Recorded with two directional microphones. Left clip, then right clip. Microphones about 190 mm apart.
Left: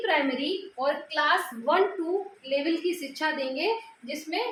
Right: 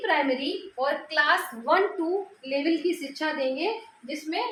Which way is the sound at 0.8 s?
35° right (ahead or behind).